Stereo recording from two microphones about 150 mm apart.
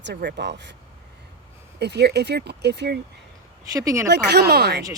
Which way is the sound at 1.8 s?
90° right.